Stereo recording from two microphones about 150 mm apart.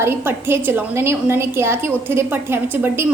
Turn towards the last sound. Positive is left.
turn(degrees=-15)  # may be behind; listen again after turning